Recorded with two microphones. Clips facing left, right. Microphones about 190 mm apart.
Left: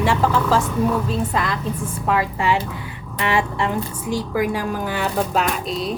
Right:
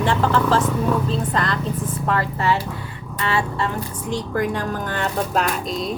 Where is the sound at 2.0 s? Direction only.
10° left (ahead or behind).